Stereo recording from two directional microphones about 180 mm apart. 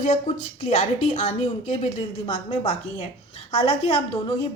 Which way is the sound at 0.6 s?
40° left (ahead or behind).